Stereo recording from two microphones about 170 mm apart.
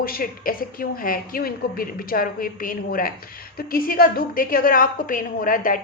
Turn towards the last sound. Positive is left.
turn(degrees=55)  # may be behind; listen again after turning